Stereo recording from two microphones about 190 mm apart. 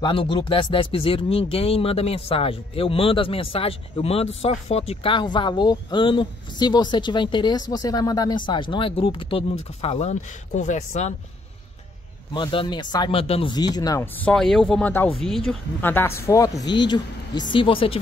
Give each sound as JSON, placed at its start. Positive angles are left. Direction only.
{"t": 0.0, "sound": "speech", "side_deg": 25}
{"t": 12.4, "sound": "speech", "side_deg": 25}
{"t": 14.2, "sound": "speech", "side_deg": 5}